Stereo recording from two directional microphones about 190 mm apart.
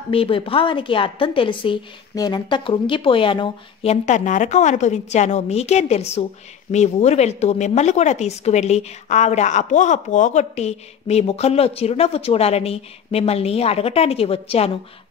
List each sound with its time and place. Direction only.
0.1 s a woman's voice: 30° left (ahead or behind)